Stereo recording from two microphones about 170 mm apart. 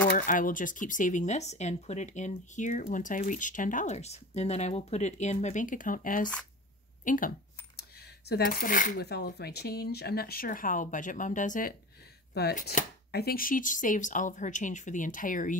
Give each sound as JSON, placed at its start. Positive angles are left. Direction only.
{"t": 0.3, "sound": "speech", "side_deg": 50}
{"t": 7.1, "sound": "a sound", "side_deg": 55}
{"t": 8.3, "sound": "speech", "side_deg": 65}
{"t": 12.4, "sound": "speech", "side_deg": 70}